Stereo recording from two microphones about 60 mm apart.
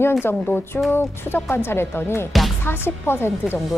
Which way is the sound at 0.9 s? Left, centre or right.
Left.